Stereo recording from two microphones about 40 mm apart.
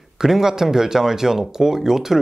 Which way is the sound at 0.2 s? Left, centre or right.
Centre.